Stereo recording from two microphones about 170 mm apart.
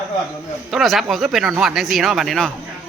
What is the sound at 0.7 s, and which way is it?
A man's voice, centre (ahead or behind).